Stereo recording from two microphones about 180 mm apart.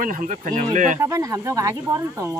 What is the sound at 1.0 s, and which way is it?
Speech, 20° right (ahead or behind).